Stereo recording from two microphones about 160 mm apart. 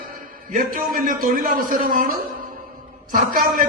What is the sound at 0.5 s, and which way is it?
A man's voice, 60° right (ahead or behind).